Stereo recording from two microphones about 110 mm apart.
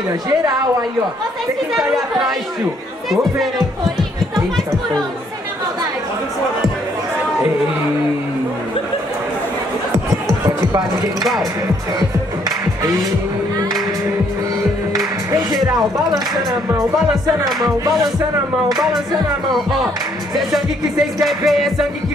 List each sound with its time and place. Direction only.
0.5 s speech: 35° right (ahead or behind)
3.1 s music: centre (ahead or behind)
12.0 s music: 35° right (ahead or behind)
15.3 s speech: 35° right (ahead or behind)
19.5 s music: centre (ahead or behind)
21.2 s music: centre (ahead or behind)